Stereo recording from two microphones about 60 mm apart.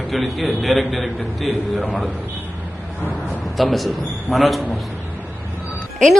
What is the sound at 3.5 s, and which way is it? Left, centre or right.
A man's voice, centre.